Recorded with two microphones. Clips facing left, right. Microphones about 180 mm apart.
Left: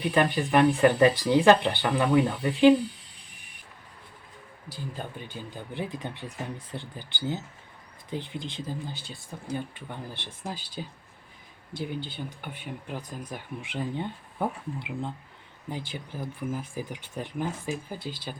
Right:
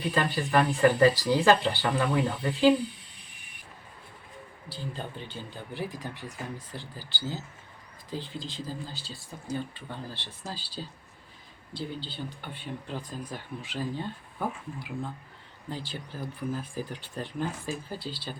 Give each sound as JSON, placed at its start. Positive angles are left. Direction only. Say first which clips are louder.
{"t": 0.0, "sound": "speech", "louder": "left 4 dB", "side_deg": 15}
{"t": 4.7, "sound": "speech", "louder": "even", "side_deg": 10}
{"t": 12.1, "sound": "speech", "louder": "left 1 dB", "side_deg": 15}